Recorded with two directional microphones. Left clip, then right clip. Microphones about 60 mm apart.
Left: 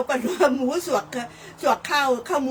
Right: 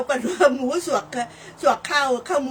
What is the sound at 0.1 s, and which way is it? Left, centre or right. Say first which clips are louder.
A woman's voice: right 4 dB; right.